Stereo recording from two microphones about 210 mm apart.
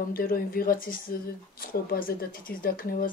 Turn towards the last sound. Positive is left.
turn(degrees=45)  # may be behind; listen again after turning